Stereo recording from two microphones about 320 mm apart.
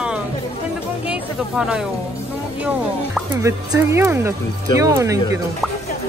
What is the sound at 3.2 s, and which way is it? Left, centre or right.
Speech, centre.